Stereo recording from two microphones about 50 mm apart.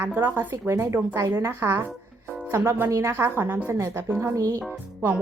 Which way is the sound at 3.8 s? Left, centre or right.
Right.